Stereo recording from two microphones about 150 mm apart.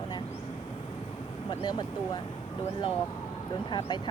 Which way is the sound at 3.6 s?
30° left (ahead or behind).